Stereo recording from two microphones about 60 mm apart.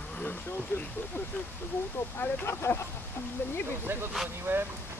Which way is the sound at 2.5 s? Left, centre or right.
Left.